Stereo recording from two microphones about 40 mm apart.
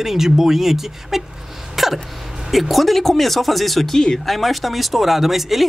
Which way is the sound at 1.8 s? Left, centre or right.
Centre.